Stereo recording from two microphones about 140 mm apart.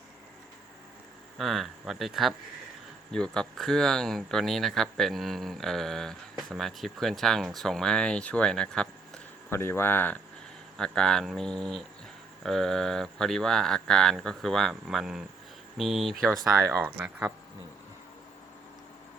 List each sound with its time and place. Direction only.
1.4 s speech: centre (ahead or behind)
9.5 s speech: 15° left (ahead or behind); by 16.1 s centre (ahead or behind)
16.2 s speech: 20° right (ahead or behind)